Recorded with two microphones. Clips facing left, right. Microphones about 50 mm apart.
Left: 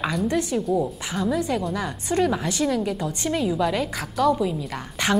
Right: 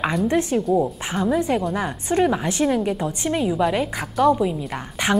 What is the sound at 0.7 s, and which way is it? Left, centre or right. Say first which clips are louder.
A woman's voice: right 3 dB; right.